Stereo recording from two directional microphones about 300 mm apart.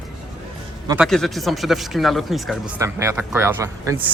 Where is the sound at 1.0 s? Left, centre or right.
Centre.